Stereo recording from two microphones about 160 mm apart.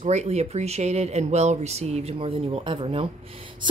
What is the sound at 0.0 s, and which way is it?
A woman's voice, 45° right (ahead or behind).